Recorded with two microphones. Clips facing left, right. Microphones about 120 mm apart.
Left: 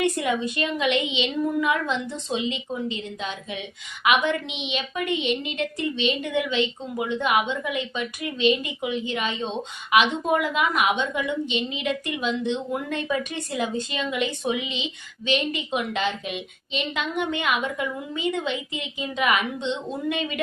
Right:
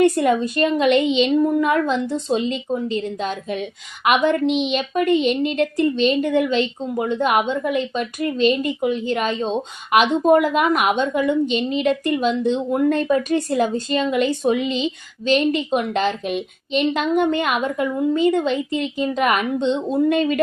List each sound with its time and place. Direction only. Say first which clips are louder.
0.0 s a woman's voice: right 7 dB; 45° right (ahead or behind)